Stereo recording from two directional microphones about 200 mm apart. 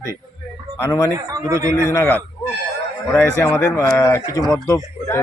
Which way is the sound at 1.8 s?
15° left (ahead or behind).